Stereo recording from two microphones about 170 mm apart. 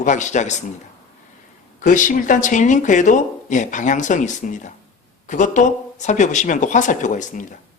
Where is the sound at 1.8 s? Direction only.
50° left (ahead or behind).